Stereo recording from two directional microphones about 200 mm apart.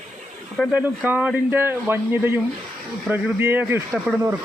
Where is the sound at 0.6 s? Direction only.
5° right (ahead or behind).